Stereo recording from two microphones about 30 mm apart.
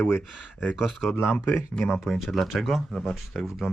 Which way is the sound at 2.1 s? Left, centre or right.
Centre.